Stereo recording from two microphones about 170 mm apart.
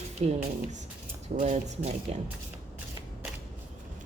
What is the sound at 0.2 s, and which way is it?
Speech, 40° right (ahead or behind).